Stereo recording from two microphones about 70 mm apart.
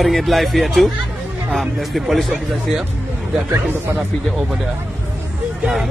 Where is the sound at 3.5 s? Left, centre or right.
Right.